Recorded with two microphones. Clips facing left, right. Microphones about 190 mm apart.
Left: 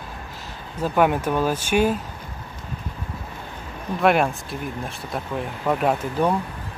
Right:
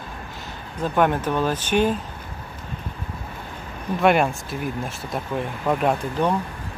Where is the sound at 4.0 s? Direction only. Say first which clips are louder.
Even; centre (ahead or behind).